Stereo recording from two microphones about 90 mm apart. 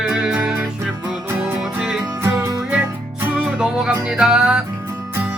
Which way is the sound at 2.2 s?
35° right (ahead or behind).